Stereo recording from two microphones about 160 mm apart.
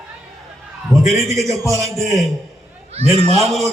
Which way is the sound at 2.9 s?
40° right (ahead or behind).